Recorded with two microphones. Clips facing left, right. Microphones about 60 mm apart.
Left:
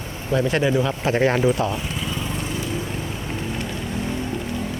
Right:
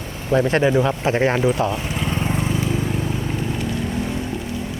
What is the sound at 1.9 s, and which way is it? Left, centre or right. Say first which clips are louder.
Lawn mower: right 4 dB; right.